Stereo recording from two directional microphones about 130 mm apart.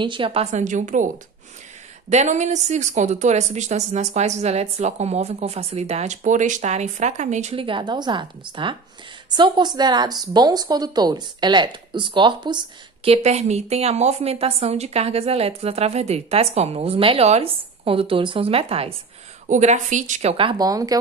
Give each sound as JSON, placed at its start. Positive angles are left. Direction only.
{"t": 0.0, "sound": "speech", "side_deg": -40}
{"t": 7.5, "sound": "a woman's voice", "side_deg": -40}
{"t": 13.1, "sound": "a woman's voice", "side_deg": -60}
{"t": 19.4, "sound": "speech", "side_deg": -70}
{"t": 20.3, "sound": "speech", "side_deg": -35}